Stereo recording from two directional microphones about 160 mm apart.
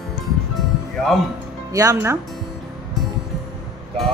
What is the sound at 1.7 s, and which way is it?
Speech, 20° right (ahead or behind).